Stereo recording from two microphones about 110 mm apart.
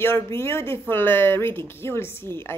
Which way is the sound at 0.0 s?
25° left (ahead or behind).